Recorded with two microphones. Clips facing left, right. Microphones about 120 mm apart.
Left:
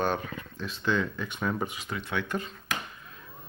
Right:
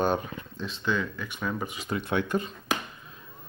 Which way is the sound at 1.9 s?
50° right (ahead or behind).